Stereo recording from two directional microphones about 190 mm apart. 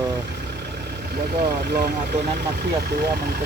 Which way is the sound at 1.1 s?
55° right (ahead or behind).